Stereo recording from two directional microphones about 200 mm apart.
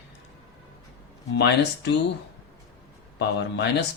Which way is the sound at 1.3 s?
60° left (ahead or behind).